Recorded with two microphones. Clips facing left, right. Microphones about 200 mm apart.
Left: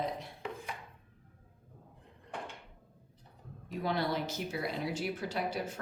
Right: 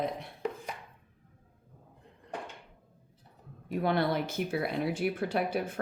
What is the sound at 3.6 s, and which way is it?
Speech, 55° right (ahead or behind).